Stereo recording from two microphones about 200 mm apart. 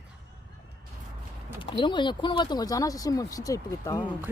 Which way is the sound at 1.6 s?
25° left (ahead or behind).